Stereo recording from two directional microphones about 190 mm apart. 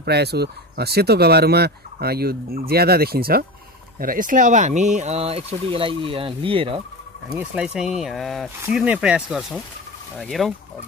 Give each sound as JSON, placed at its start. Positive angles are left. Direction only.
{"t": 0.0, "sound": "speech", "side_deg": -60}
{"t": 7.3, "sound": "speech", "side_deg": -5}